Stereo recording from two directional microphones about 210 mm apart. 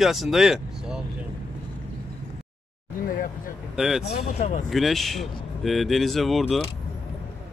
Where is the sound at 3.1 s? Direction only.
40° left (ahead or behind).